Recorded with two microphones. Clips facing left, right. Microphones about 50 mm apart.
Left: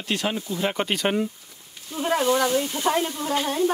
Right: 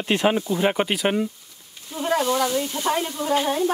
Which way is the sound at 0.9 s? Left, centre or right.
Centre.